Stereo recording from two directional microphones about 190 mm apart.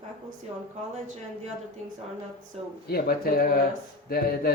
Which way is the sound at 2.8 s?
55° left (ahead or behind).